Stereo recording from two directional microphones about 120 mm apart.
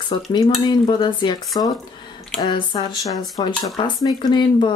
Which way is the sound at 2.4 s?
35° left (ahead or behind).